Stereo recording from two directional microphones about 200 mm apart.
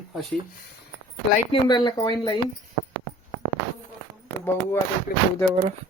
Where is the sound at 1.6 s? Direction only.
20° left (ahead or behind).